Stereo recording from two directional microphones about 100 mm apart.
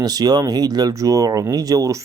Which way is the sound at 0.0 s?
40° right (ahead or behind).